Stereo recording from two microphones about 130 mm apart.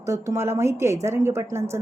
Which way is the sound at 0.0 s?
20° right (ahead or behind).